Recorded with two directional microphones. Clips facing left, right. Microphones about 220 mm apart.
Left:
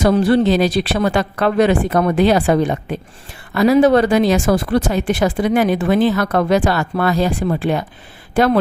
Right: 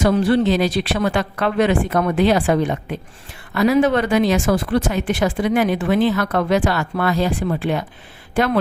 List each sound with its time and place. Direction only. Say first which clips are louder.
0.0 s speech: left 2 dB; 40° left (ahead or behind)